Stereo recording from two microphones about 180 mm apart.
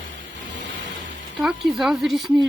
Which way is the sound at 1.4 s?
Centre (ahead or behind).